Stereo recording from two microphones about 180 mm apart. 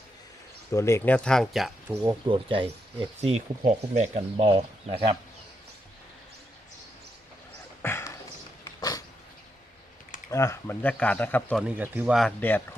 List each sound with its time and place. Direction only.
0.7 s speech: 15° left (ahead or behind)
2.2 s speech: 30° right (ahead or behind)
7.8 s a sound: 15° left (ahead or behind)
8.6 s dog: 20° left (ahead or behind)
10.2 s speech: 15° left (ahead or behind)
11.8 s speech: 10° right (ahead or behind)
12.2 s speech: 10° left (ahead or behind)